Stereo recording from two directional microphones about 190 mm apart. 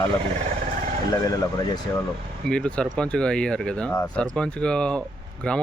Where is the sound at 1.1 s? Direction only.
20° left (ahead or behind).